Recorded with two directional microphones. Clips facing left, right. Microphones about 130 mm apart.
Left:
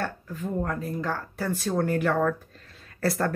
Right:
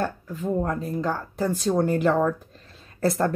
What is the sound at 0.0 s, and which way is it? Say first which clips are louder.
Speech: right 4 dB; 20° right (ahead or behind).